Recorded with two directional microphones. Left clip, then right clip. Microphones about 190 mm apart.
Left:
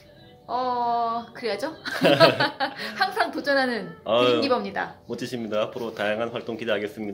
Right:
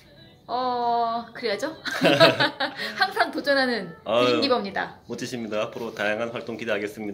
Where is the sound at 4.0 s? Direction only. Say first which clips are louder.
Left 1 dB; 20° left (ahead or behind).